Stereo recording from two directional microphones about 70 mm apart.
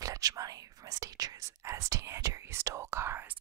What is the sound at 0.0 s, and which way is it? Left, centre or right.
Whispering, right.